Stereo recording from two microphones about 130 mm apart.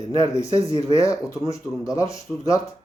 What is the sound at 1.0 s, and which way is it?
Speech, 25° left (ahead or behind).